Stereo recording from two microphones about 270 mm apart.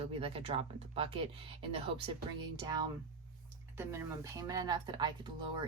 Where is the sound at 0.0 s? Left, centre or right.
Right.